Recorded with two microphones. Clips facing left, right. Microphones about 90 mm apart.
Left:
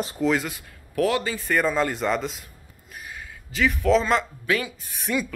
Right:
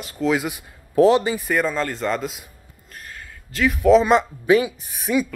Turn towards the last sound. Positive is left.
turn(degrees=-5)  # may be behind; listen again after turning